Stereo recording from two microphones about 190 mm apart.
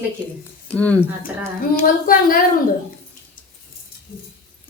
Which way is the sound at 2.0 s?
50° left (ahead or behind).